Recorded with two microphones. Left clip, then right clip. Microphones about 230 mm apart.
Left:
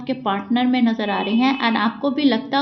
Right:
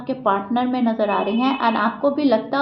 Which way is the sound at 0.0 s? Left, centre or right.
Left.